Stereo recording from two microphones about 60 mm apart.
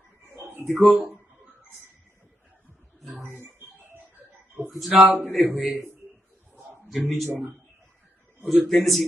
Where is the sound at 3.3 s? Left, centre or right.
Right.